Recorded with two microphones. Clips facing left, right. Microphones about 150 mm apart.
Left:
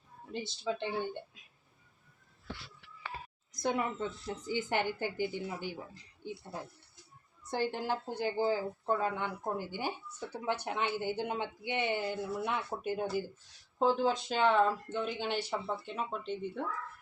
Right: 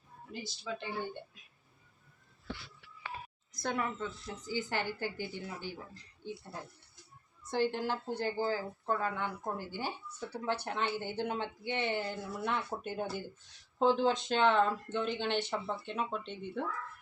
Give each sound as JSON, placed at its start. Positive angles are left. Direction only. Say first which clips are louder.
{"t": 0.4, "sound": "a woman's voice", "louder": "left 6 dB", "side_deg": 25}
{"t": 3.5, "sound": "a woman's voice", "louder": "left 3 dB", "side_deg": 15}